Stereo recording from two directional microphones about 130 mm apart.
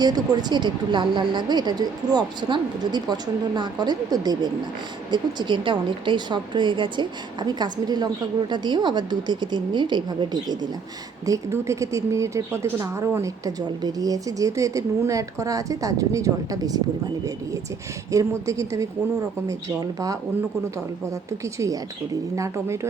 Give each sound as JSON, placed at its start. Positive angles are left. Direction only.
{"t": 0.0, "sound": "a woman's voice", "side_deg": -30}
{"t": 18.1, "sound": "a woman's voice", "side_deg": -25}